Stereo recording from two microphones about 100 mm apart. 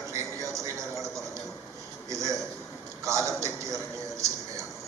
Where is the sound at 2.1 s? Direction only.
30° right (ahead or behind).